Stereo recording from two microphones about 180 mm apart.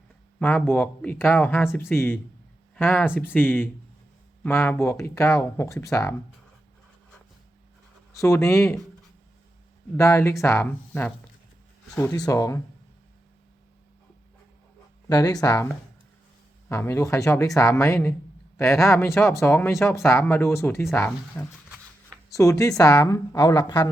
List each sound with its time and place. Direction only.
0.3 s speech: 10° left (ahead or behind)
8.1 s speech: 15° left (ahead or behind)
10.0 s speech: 15° left (ahead or behind)
15.1 s a woman's voice: 20° left (ahead or behind)
16.6 s a woman's voice: 15° left (ahead or behind)